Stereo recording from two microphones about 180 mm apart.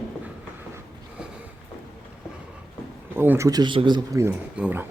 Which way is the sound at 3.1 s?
10° right (ahead or behind).